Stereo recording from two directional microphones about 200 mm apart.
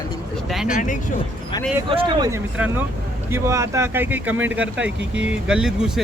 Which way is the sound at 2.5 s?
10° right (ahead or behind).